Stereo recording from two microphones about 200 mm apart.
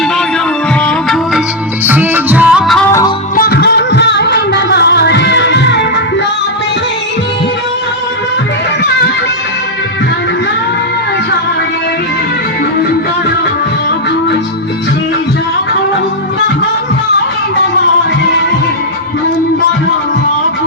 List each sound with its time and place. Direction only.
1.9 s music: 10° right (ahead or behind)
3.3 s music: 50° left (ahead or behind)